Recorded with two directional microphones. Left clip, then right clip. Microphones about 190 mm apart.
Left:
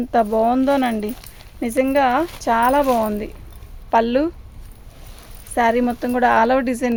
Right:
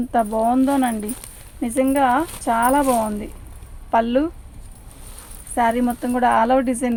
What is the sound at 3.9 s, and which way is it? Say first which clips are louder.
Speech: left 1 dB; 50° left (ahead or behind).